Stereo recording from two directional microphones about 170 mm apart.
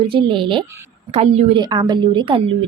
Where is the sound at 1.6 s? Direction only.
25° right (ahead or behind).